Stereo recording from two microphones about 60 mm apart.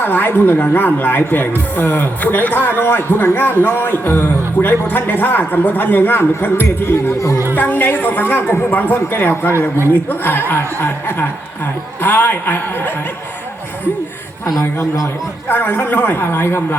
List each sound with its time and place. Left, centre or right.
0.0 s speech: left
7.5 s speech: left
14.6 s a man's voice: left
15.4 s speech: left